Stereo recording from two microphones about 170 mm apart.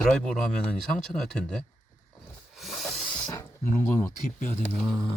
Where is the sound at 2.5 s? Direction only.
Centre (ahead or behind).